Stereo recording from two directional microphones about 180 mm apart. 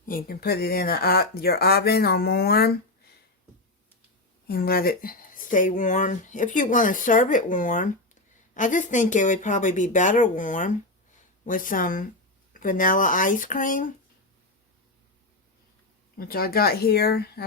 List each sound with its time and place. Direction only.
0.0 s speech: 50° left (ahead or behind)
4.4 s speech: 60° left (ahead or behind)
16.1 s speech: 55° left (ahead or behind)